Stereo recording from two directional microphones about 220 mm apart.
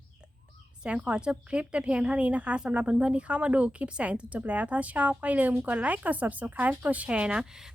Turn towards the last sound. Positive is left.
turn(degrees=-5)  # may be behind; listen again after turning